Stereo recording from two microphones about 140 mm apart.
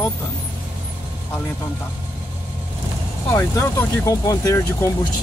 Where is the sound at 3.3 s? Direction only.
20° left (ahead or behind).